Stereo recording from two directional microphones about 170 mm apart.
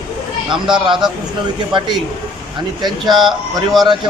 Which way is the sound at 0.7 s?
25° right (ahead or behind).